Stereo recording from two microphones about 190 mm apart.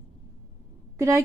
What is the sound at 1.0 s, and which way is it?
Speech, 15° right (ahead or behind).